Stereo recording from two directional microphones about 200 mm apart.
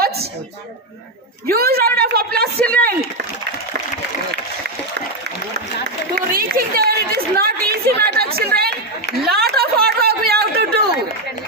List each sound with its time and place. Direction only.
1.5 s a woman's voice: 50° right (ahead or behind)
2.6 s speech: 5° left (ahead or behind)
6.1 s a sound: 50° right (ahead or behind)